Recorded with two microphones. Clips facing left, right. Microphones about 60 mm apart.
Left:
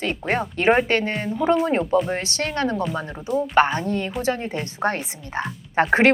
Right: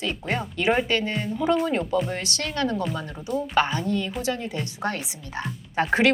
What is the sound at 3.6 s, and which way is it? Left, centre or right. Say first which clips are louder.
Speech: left 4 dB; left.